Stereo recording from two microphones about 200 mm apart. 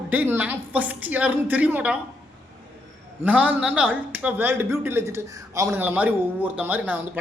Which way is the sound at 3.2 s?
5° right (ahead or behind).